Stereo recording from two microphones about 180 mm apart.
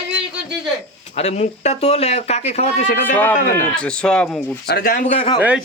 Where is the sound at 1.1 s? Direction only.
35° left (ahead or behind).